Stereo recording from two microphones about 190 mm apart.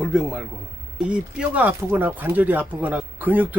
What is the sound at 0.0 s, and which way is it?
A man's voice, 5° right (ahead or behind).